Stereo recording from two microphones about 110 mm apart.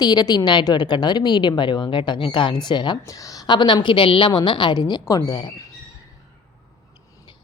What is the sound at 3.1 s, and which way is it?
A woman's voice, 30° left (ahead or behind).